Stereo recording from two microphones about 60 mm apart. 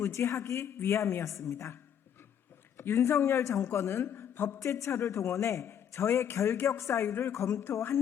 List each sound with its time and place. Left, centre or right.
0.0 s a man's voice: left
4.6 s a man's voice: left
7.1 s a woman's voice: left
7.3 s a man's voice: left